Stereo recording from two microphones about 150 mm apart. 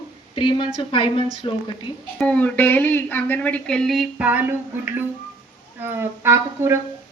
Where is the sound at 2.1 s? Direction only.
10° left (ahead or behind); by 6.7 s 15° right (ahead or behind).